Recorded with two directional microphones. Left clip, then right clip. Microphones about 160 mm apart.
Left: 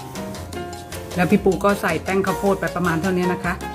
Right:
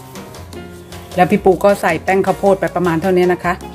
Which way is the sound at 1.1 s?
45° right (ahead or behind).